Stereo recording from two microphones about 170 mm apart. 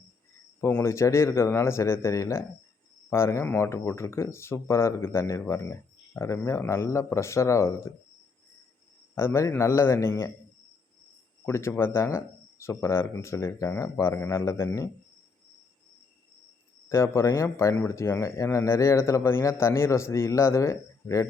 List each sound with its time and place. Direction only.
0.6 s speech: 15° left (ahead or behind)
9.1 s speech: 15° left (ahead or behind)
11.4 s speech: 15° left (ahead or behind)
16.9 s speech: 15° left (ahead or behind)